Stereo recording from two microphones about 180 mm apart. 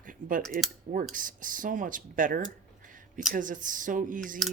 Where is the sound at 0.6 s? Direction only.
Centre (ahead or behind).